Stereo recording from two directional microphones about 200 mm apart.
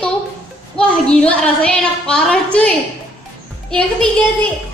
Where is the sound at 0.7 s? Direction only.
5° left (ahead or behind).